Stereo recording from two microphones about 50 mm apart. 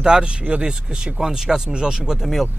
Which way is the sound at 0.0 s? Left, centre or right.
Centre.